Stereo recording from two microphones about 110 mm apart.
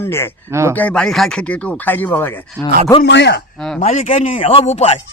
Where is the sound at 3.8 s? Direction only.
85° left.